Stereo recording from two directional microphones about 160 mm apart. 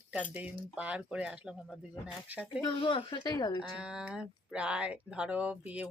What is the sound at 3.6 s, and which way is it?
Speech, 5° right (ahead or behind).